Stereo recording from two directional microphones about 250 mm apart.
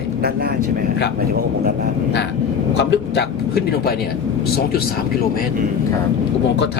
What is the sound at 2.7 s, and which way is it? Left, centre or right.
Speech, left.